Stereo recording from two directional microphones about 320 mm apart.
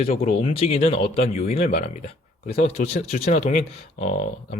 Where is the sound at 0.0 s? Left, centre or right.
Left.